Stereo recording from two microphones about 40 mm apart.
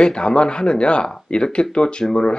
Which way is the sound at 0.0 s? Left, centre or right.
Left.